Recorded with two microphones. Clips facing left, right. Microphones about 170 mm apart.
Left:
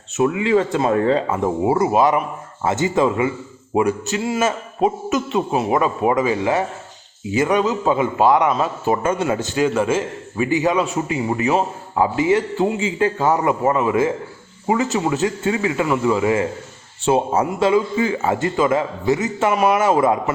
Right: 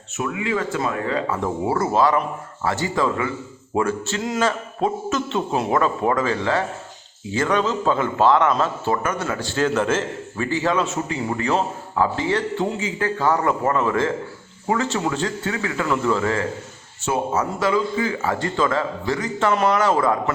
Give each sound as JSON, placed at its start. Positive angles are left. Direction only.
{"t": 0.2, "sound": "a man's voice", "side_deg": 30}
{"t": 9.0, "sound": "a man's voice", "side_deg": 25}
{"t": 19.5, "sound": "a man's voice", "side_deg": 10}
{"t": 19.9, "sound": "speech", "side_deg": 20}